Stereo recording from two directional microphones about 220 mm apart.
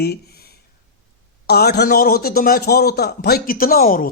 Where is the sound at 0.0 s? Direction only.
45° left (ahead or behind).